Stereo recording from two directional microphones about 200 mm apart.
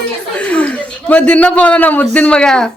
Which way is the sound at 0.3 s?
5° left (ahead or behind).